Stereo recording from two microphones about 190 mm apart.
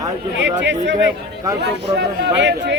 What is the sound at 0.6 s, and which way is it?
Speech, 65° right (ahead or behind).